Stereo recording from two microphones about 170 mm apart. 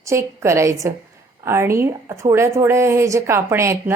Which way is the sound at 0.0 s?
15° right (ahead or behind).